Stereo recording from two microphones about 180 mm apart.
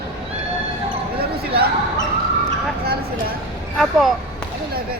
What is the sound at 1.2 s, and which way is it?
Basketball bounce, 60° right (ahead or behind).